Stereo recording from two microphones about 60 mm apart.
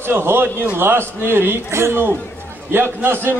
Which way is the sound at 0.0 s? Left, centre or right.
Right.